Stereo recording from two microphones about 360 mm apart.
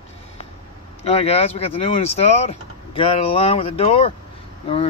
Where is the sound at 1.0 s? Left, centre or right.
Centre.